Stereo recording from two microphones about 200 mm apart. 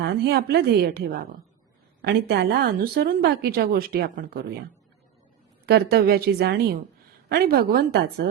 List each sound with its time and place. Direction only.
0.0 s a woman's voice: 55° right (ahead or behind)
5.6 s speech: 55° right (ahead or behind)